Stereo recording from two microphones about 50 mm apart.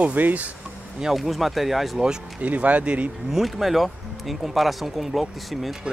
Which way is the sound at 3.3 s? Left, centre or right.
Centre.